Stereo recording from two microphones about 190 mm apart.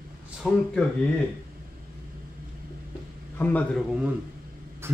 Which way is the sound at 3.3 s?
10° left (ahead or behind).